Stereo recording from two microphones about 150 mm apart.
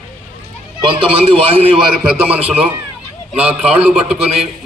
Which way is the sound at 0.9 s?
40° right (ahead or behind).